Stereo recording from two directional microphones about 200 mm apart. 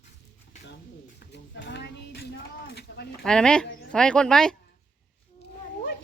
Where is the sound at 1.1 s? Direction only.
60° left (ahead or behind).